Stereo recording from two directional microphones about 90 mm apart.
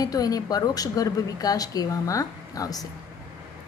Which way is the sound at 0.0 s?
45° left (ahead or behind).